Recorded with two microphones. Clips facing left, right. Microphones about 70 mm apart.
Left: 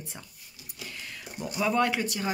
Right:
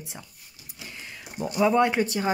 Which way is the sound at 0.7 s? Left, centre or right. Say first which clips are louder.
Even; right.